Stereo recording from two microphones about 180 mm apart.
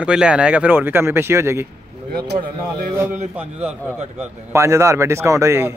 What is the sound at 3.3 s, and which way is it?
Speech, 5° right (ahead or behind).